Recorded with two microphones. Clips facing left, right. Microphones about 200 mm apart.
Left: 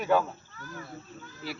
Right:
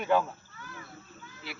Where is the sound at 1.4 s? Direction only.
40° left (ahead or behind).